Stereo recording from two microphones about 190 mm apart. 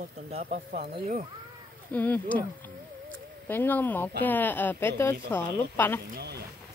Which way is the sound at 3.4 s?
10° left (ahead or behind).